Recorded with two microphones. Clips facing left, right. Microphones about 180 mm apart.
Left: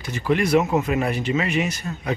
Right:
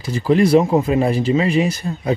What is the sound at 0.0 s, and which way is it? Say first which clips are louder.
Speech: right 6 dB; 35° right (ahead or behind).